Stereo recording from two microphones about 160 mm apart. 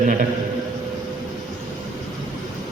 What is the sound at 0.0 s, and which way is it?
Speech, 55° right (ahead or behind).